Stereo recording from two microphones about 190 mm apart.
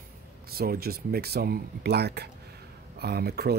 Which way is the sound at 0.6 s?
55° right (ahead or behind).